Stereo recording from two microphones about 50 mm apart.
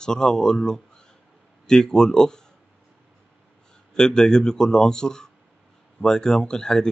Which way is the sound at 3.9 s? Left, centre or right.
Centre.